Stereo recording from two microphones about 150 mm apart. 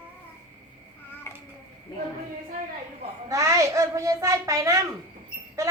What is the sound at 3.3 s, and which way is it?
A woman's voice, 20° right (ahead or behind).